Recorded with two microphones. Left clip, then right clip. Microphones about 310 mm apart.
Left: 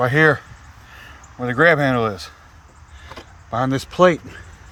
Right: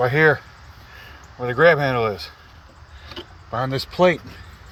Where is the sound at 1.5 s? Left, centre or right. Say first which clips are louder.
Left 1 dB; centre.